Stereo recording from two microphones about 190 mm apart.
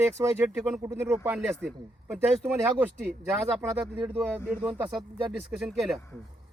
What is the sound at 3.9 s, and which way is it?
Speech, 25° right (ahead or behind).